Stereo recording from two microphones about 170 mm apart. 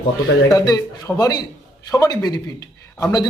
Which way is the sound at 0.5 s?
20° left (ahead or behind).